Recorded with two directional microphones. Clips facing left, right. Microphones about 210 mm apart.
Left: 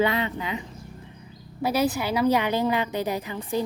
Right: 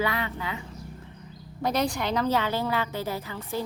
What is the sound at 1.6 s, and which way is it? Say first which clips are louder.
A woman's voice: left 3 dB; 5° left (ahead or behind).